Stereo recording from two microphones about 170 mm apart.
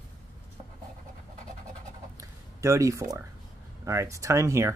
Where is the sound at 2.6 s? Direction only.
15° right (ahead or behind).